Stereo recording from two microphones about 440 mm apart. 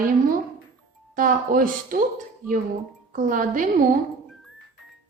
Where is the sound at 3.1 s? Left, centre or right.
Centre.